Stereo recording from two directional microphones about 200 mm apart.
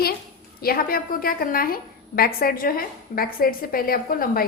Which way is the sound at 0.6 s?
50° left (ahead or behind).